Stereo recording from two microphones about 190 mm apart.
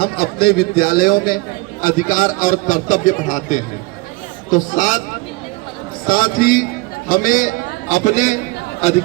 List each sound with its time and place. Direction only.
0.0 s a man's voice: 50° left (ahead or behind)
6.1 s a man's voice: 50° left (ahead or behind)